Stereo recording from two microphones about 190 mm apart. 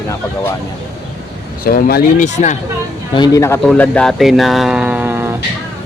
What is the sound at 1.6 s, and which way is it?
Speech, 50° left (ahead or behind).